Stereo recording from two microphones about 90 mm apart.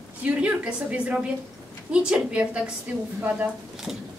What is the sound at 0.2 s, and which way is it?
A woman's voice, 15° right (ahead or behind).